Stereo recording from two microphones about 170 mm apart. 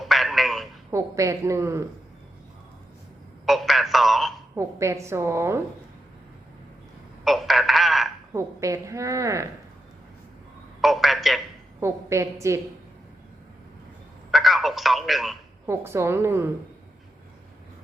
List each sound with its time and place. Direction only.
0.0 s a sound: centre (ahead or behind)
0.9 s a woman's voice: 20° right (ahead or behind)
3.4 s a sound: centre (ahead or behind)
4.5 s a woman's voice: 15° right (ahead or behind)
7.3 s telephone: centre (ahead or behind)
8.3 s a woman's voice: 20° right (ahead or behind)
10.8 s a sound: centre (ahead or behind)
11.8 s a woman's voice: 15° right (ahead or behind)
14.3 s telephone: centre (ahead or behind)
15.6 s a woman's voice: 15° right (ahead or behind)